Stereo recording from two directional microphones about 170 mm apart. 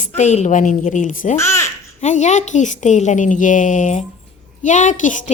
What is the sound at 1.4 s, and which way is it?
Speech, 15° left (ahead or behind).